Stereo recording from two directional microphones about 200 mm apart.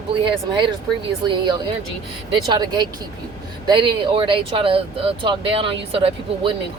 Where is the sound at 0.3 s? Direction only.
25° right (ahead or behind).